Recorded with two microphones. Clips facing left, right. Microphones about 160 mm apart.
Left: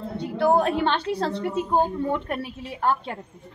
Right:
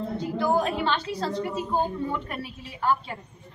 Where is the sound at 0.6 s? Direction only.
60° left (ahead or behind).